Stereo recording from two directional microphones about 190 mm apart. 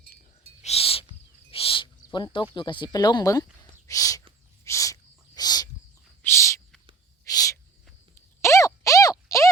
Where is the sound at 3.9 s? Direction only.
15° left (ahead or behind).